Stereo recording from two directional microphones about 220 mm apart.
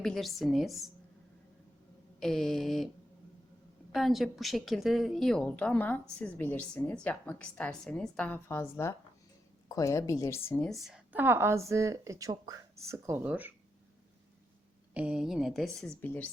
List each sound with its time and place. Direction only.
0.0 s a woman's voice: centre (ahead or behind)
2.2 s a woman's voice: centre (ahead or behind)
3.9 s a woman's voice: centre (ahead or behind)
14.9 s a woman's voice: 5° right (ahead or behind)